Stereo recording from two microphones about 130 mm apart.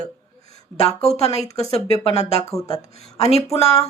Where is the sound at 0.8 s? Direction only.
50° left (ahead or behind).